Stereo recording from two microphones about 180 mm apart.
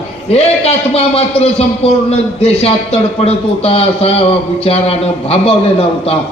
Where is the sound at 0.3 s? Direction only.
35° left (ahead or behind).